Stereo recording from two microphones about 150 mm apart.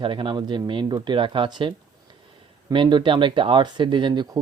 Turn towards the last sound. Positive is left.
turn(degrees=-30)  # may be behind; listen again after turning